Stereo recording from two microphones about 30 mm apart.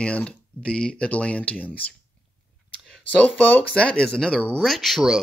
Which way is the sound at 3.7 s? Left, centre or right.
Left.